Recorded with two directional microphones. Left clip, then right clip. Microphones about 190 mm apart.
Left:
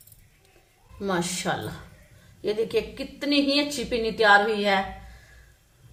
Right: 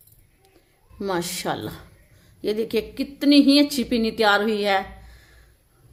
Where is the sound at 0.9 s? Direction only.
50° right (ahead or behind).